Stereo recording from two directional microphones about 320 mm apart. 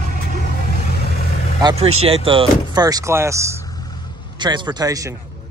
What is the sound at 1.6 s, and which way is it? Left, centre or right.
Speech, centre.